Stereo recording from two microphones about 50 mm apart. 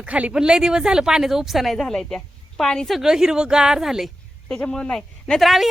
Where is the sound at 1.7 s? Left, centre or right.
Centre.